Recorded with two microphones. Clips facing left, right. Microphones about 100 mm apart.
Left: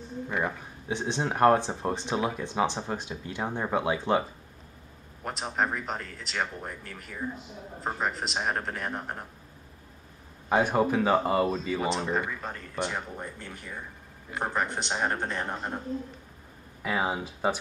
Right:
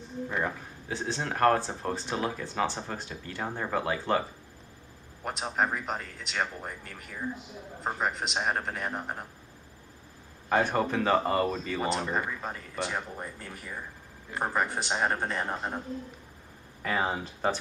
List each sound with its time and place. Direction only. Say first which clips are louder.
0.3 s speech: left 2 dB; 10° left (ahead or behind)
5.2 s speech: even; centre (ahead or behind)
10.5 s speech: left 2 dB; 10° left (ahead or behind); by 15.8 s 5° right (ahead or behind)
16.8 s speech: left 1 dB; 5° left (ahead or behind)